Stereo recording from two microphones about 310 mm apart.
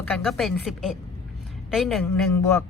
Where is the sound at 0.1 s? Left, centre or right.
Centre.